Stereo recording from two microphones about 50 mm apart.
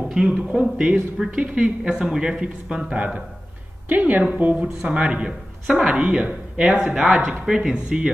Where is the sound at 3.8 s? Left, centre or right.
Right.